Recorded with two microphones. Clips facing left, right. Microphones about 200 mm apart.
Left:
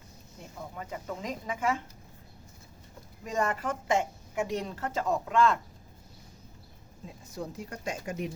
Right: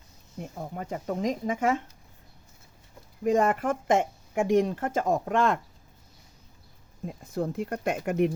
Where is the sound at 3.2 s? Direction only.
55° right (ahead or behind).